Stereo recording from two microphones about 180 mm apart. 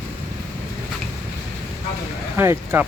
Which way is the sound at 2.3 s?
10° right (ahead or behind).